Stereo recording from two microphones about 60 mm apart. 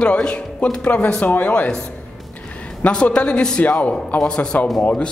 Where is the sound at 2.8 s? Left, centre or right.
Centre.